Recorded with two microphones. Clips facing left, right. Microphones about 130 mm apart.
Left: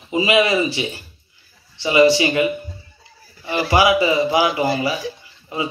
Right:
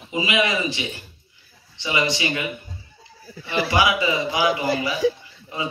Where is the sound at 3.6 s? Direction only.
30° left (ahead or behind).